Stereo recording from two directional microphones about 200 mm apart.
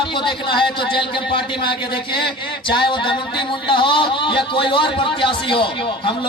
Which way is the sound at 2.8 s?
25° left (ahead or behind).